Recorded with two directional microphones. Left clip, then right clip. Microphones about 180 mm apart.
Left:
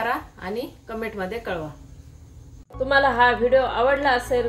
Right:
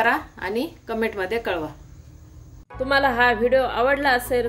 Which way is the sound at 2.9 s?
40° right (ahead or behind).